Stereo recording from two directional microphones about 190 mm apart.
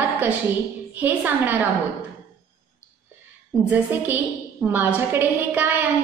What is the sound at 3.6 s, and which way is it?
A woman's voice, 10° right (ahead or behind).